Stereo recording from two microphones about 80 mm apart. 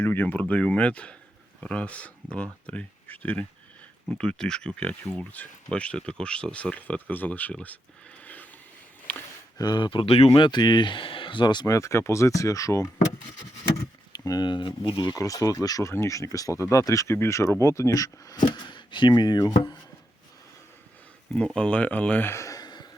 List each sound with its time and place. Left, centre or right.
0.0 s speech: left
8.2 s a sound: left
9.6 s speech: left
11.6 s speech: left
14.1 s speech: left
15.2 s speech: left
15.9 s speech: left
18.3 s speech: left
21.3 s speech: centre
22.3 s a sound: left
22.6 s a sound: left